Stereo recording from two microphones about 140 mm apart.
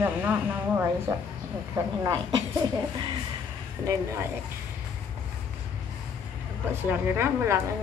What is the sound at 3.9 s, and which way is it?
Speech, 20° right (ahead or behind).